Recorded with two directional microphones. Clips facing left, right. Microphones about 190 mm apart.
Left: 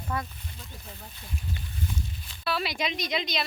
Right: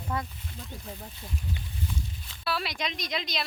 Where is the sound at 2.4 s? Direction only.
Centre (ahead or behind).